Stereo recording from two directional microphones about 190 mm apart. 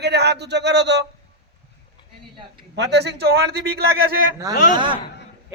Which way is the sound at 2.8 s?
65° right (ahead or behind).